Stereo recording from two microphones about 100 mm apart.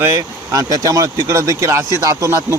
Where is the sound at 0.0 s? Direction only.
30° right (ahead or behind).